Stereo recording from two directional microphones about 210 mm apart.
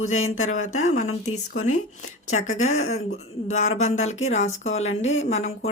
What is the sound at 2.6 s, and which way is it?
Speech, 75° left (ahead or behind).